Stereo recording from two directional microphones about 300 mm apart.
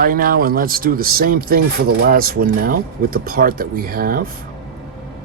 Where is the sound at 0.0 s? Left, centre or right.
Right.